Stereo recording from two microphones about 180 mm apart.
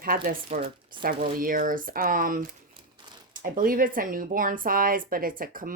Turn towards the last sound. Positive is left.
turn(degrees=-50)  # may be behind; listen again after turning